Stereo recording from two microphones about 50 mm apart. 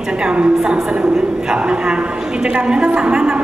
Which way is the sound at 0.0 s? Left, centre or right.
Centre.